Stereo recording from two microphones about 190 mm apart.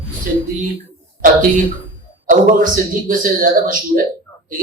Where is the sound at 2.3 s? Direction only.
45° right (ahead or behind).